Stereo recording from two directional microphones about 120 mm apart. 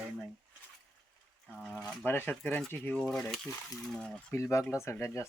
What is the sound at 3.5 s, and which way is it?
Speech, 25° left (ahead or behind).